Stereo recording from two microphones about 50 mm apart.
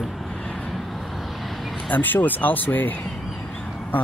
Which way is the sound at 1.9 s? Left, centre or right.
Left.